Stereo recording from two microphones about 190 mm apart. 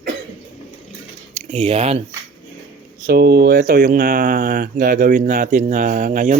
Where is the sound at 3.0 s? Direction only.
55° right (ahead or behind).